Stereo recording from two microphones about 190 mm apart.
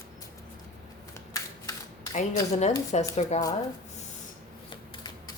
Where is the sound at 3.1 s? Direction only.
35° left (ahead or behind).